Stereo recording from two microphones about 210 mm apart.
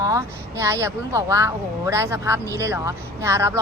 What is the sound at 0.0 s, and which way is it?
A woman's voice, 15° right (ahead or behind).